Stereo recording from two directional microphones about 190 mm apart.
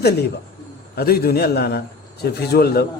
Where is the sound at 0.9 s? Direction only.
55° left (ahead or behind).